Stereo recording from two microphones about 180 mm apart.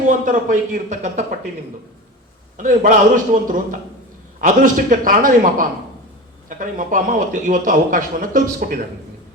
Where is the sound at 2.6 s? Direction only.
45° right (ahead or behind).